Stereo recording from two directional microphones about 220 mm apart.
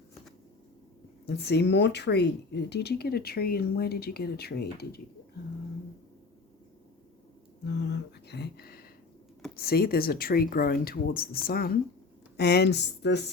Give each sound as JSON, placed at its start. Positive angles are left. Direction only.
{"t": 1.3, "sound": "a woman's voice", "side_deg": 50}
{"t": 7.6, "sound": "a sound", "side_deg": 50}
{"t": 9.6, "sound": "a woman's voice", "side_deg": 45}